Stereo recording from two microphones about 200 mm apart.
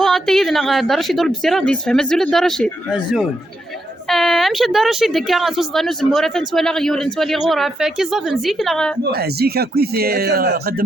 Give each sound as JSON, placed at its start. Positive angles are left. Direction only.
{"t": 0.0, "sound": "speech", "side_deg": 0}
{"t": 9.1, "sound": "speech", "side_deg": -50}